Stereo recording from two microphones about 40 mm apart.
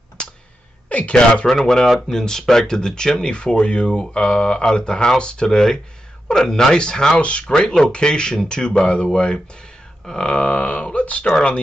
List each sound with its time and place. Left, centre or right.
0.8 s speech: left
1.5 s speech: centre
3.5 s speech: left
7.2 s speech: left
11.2 s speech: left